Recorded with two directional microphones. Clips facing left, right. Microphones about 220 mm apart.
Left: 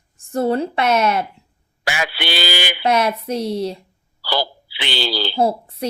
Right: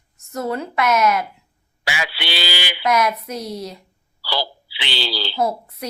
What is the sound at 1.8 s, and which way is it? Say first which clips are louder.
Speech: left 3 dB; 50° left (ahead or behind).